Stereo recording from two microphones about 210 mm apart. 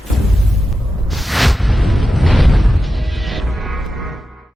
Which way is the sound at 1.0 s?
Centre (ahead or behind).